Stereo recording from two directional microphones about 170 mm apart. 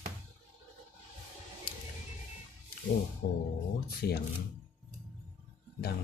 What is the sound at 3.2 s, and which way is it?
Speech, 65° left (ahead or behind).